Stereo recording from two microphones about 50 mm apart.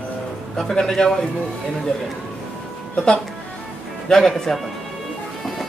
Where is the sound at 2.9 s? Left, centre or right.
Centre.